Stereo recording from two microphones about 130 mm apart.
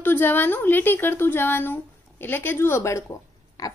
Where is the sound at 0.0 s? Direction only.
15° left (ahead or behind).